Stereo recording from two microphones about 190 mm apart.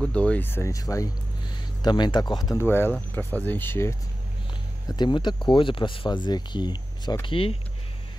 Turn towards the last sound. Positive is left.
turn(degrees=30)  # may be behind; listen again after turning